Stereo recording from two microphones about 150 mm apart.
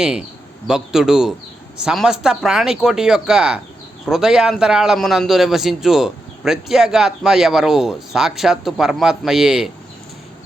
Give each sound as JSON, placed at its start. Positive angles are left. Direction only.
{"t": 0.7, "sound": "a man's voice", "side_deg": -5}